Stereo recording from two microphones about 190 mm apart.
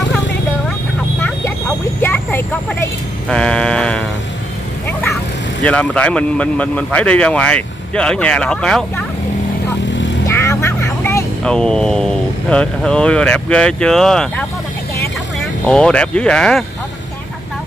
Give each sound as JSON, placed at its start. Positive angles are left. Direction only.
{"t": 2.0, "sound": "vehicle", "side_deg": 10}
{"t": 5.6, "sound": "speech", "side_deg": 5}
{"t": 10.2, "sound": "speech", "side_deg": 15}
{"t": 15.6, "sound": "speech", "side_deg": 5}